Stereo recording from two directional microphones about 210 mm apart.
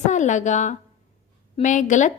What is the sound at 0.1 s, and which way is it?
A woman's voice, 35° left (ahead or behind).